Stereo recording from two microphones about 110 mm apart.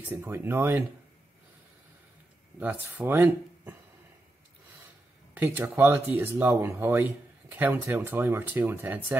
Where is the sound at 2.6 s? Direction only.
15° right (ahead or behind).